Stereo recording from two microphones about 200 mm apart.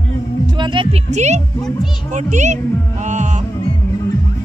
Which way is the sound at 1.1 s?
35° right (ahead or behind).